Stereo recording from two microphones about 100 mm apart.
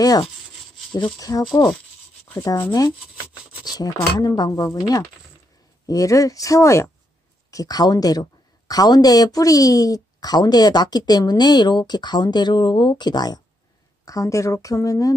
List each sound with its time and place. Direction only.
0.9 s speech: 50° left (ahead or behind)
2.3 s speech: 30° left (ahead or behind)
14.0 s speech: 35° left (ahead or behind)